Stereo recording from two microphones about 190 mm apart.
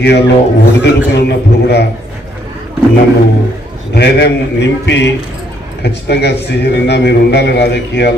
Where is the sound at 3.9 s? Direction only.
65° left (ahead or behind).